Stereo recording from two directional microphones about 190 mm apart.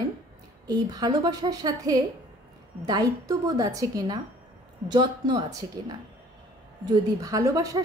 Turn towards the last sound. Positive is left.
turn(degrees=-15)  # may be behind; listen again after turning